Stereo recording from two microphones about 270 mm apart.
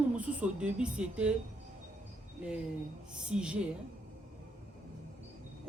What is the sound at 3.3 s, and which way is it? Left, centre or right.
Speech, centre.